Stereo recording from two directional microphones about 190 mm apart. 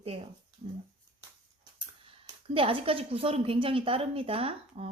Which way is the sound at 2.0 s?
30° right (ahead or behind).